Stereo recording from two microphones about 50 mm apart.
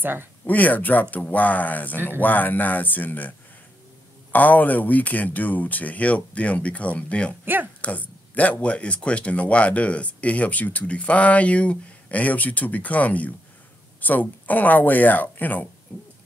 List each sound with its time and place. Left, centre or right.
0.0 s speech: right
0.5 s speech: left